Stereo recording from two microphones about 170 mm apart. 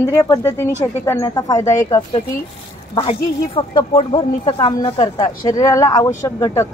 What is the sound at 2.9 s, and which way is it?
A woman's voice, 35° left (ahead or behind).